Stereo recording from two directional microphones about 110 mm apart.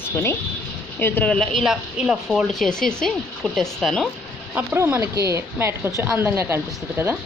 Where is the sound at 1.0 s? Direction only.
20° left (ahead or behind).